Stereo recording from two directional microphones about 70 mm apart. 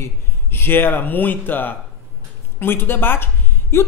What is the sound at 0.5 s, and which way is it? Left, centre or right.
A man's voice, left.